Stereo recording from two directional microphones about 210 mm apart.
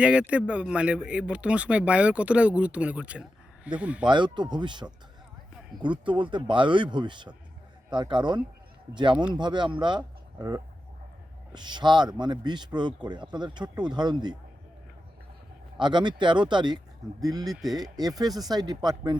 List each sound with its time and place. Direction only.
0.0 s speech: 5° right (ahead or behind)
4.1 s speech: 20° right (ahead or behind)
10.0 s a sound: 15° right (ahead or behind)
11.5 s speech: 20° right (ahead or behind)
15.8 s speech: 20° right (ahead or behind)
17.5 s speech: centre (ahead or behind)
18.2 s speech: 20° right (ahead or behind)